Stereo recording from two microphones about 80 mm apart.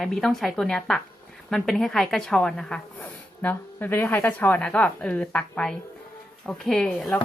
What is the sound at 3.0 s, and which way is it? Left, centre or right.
A woman's voice, left.